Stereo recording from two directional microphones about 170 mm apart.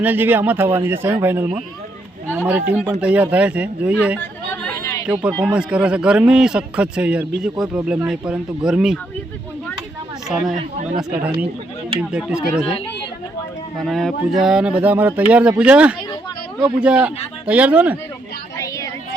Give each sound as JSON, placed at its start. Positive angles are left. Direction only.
{"t": 0.0, "sound": "speech", "side_deg": -10}
{"t": 4.2, "sound": "a sound", "side_deg": 15}
{"t": 5.4, "sound": "speech", "side_deg": -10}
{"t": 8.0, "sound": "speech", "side_deg": -5}
{"t": 10.3, "sound": "speech", "side_deg": -5}
{"t": 13.7, "sound": "speech", "side_deg": 0}
{"t": 18.5, "sound": "child singing", "side_deg": 15}